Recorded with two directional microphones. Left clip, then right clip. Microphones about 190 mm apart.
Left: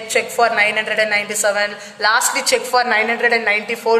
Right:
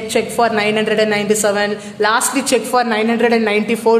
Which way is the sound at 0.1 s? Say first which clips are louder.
Even; 10° right (ahead or behind).